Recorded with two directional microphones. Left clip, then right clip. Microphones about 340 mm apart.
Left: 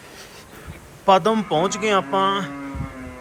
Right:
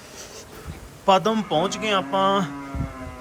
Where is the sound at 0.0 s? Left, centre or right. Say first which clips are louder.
Right 1 dB; centre.